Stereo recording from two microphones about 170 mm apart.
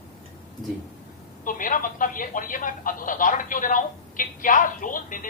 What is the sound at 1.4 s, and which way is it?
Speech, 50° left (ahead or behind).